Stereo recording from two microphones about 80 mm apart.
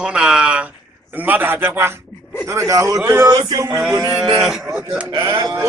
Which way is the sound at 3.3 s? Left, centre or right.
Right.